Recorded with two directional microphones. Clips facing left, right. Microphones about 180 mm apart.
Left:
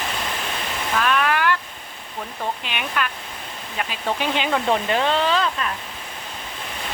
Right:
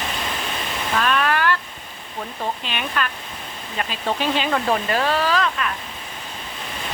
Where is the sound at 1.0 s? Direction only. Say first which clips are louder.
Even; 10° left (ahead or behind).